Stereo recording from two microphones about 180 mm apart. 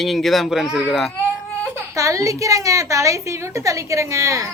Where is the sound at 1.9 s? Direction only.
15° right (ahead or behind).